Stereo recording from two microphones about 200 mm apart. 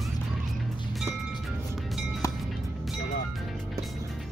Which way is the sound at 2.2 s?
15° left (ahead or behind).